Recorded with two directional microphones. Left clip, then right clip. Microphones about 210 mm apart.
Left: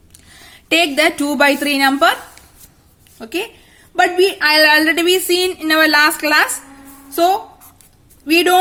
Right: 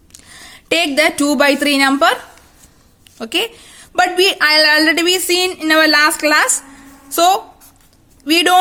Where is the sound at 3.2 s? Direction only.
30° right (ahead or behind).